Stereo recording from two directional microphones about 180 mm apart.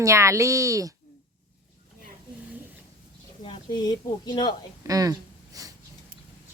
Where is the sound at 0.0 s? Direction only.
15° right (ahead or behind).